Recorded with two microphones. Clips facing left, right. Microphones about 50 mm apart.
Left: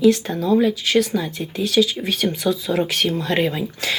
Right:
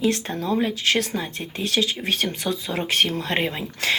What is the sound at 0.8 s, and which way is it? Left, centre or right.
Speech, right.